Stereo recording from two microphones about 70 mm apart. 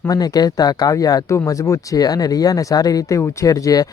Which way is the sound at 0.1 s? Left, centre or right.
Left.